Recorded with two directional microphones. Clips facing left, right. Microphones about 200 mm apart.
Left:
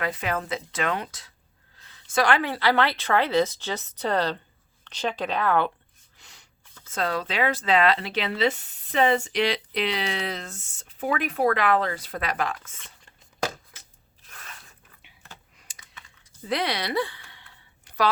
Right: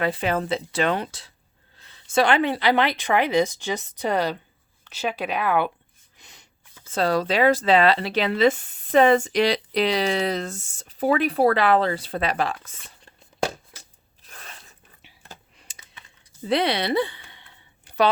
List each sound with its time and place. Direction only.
0.0 s speech: 30° right (ahead or behind); by 5.7 s 10° right (ahead or behind)
6.1 s a sound: 20° right (ahead or behind)
6.8 s speech: 30° right (ahead or behind)
14.3 s biting: 35° right (ahead or behind)
15.0 s computer keyboard: 35° right (ahead or behind)
16.5 s a sound: 25° right (ahead or behind)